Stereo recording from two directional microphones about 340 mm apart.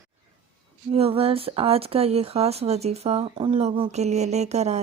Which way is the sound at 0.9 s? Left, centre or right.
Centre.